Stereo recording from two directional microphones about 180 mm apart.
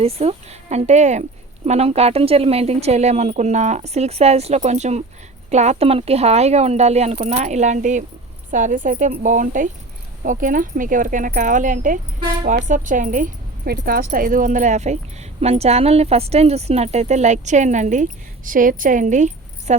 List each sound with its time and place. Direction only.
0.0 s speech: 35° right (ahead or behind)